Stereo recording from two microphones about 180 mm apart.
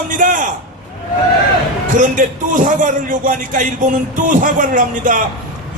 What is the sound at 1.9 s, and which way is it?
A man's voice, 45° right (ahead or behind).